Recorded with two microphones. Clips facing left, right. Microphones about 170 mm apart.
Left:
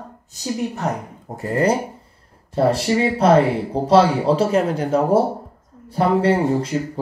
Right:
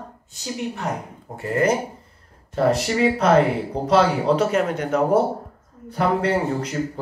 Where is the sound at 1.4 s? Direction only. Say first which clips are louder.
Left 2 dB; 35° left (ahead or behind).